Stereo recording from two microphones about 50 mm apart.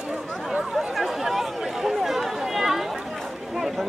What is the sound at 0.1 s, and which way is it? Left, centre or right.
Chatter, centre.